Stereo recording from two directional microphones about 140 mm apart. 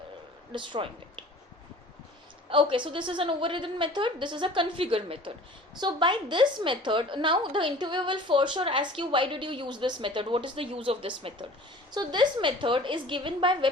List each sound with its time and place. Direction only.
0.5 s a woman's voice: 35° right (ahead or behind)
2.5 s a woman's voice: 35° right (ahead or behind)